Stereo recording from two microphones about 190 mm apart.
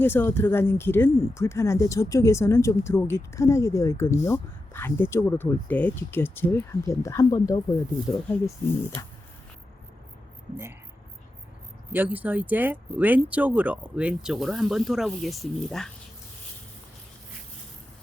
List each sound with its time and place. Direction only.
0.0 s speech: 10° left (ahead or behind)
11.9 s speech: 10° right (ahead or behind)